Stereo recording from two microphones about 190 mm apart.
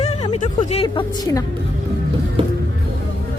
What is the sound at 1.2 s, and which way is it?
Speech, 20° left (ahead or behind).